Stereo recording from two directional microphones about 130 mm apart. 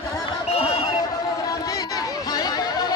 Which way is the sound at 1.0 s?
30° left (ahead or behind).